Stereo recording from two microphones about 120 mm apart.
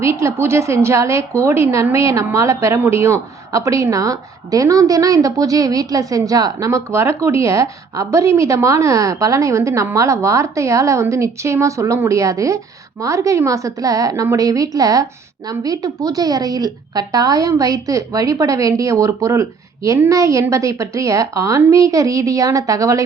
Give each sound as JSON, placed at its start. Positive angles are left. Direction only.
{"t": 0.0, "sound": "a woman's voice", "side_deg": -25}